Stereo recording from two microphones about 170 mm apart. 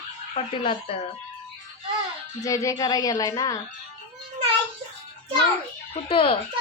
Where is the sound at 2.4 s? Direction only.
20° left (ahead or behind).